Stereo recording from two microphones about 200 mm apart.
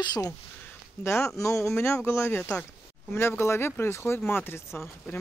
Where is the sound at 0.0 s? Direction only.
20° left (ahead or behind).